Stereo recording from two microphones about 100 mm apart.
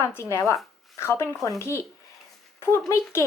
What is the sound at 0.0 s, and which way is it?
A woman's voice, 30° left (ahead or behind).